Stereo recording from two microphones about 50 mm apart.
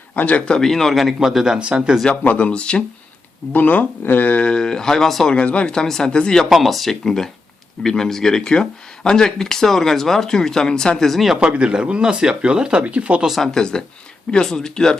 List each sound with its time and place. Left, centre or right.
0.2 s speech: left
0.6 s speech: centre
1.2 s speech: centre
1.5 s speech: right
2.2 s speech: left
3.5 s speech: left
4.3 s speech: left; by 5.3 s centre
5.3 s speech: left
6.5 s speech: centre
10.9 s speech: centre
11.3 s speech: right
13.2 s speech: centre
13.5 s speech: centre